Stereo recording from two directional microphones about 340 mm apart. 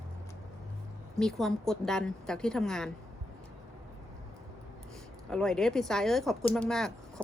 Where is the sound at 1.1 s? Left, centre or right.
Centre.